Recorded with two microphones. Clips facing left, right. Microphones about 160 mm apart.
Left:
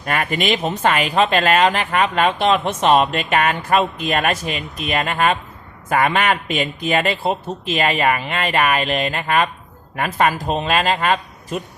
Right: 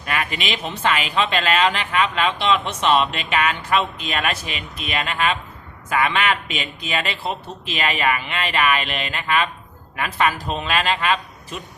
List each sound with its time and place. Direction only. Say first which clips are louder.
0.0 s speech: left 5 dB; 45° left (ahead or behind)